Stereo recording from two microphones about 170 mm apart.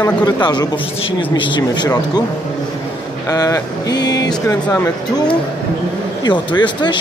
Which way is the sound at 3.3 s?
20° left (ahead or behind).